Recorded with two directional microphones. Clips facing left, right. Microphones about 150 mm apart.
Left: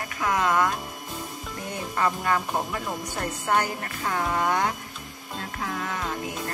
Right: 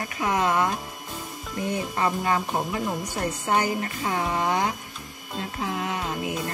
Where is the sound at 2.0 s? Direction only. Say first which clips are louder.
Left 1 dB; 10° right (ahead or behind).